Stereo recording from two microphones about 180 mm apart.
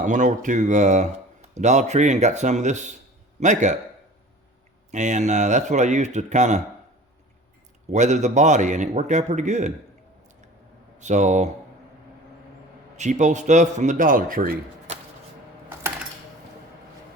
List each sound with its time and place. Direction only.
0.0 s speech: 45° right (ahead or behind)
4.9 s speech: 40° right (ahead or behind)
7.9 s speech: 40° right (ahead or behind)
10.9 s speech: 40° right (ahead or behind)
13.0 s a man's voice: 40° right (ahead or behind)